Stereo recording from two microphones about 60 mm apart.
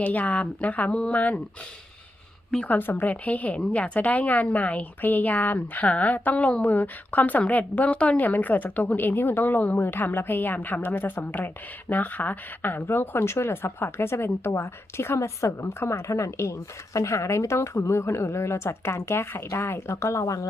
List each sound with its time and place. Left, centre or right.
0.0 s a woman's voice: left
2.6 s a woman's voice: left